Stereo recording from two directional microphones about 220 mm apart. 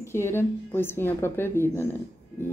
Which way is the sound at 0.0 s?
10° left (ahead or behind).